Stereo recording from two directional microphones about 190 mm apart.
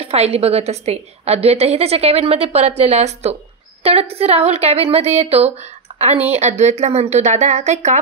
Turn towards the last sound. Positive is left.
turn(degrees=-35)  # may be behind; listen again after turning